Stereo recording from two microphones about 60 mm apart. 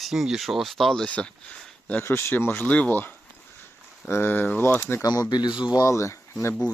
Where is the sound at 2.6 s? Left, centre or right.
Left.